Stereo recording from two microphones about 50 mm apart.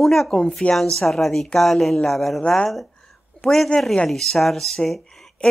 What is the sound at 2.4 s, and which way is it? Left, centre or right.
Speech, centre.